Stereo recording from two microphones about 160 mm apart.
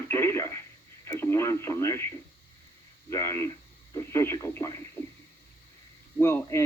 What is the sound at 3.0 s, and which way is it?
Speech, 15° left (ahead or behind).